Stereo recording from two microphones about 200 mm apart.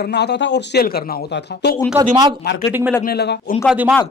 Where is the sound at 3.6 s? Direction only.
5° right (ahead or behind).